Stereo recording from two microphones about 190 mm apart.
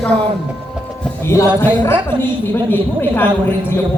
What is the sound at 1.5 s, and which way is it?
A woman's voice, 10° left (ahead or behind).